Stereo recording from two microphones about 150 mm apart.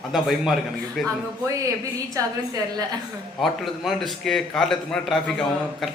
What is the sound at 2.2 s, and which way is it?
Speech, 20° right (ahead or behind).